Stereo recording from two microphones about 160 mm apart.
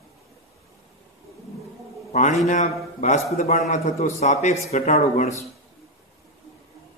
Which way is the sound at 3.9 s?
45° left (ahead or behind).